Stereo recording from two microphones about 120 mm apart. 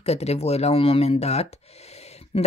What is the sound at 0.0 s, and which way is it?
Speech, 60° left (ahead or behind).